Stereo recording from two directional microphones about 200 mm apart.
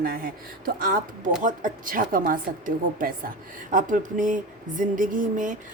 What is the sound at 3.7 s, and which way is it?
Speech, 40° right (ahead or behind).